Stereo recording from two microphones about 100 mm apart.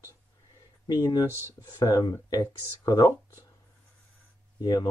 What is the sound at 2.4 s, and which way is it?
Speech, 40° left (ahead or behind).